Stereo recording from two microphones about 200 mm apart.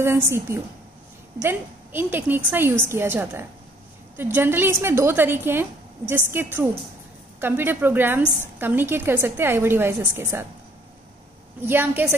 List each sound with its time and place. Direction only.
0.0 s a woman's voice: 15° right (ahead or behind)
11.6 s a woman's voice: 10° right (ahead or behind)